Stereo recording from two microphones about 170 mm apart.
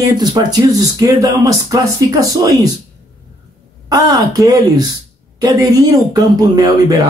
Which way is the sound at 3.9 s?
20° right (ahead or behind).